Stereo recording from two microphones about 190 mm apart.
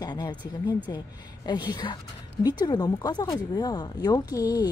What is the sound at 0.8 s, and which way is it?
Speech, 20° left (ahead or behind).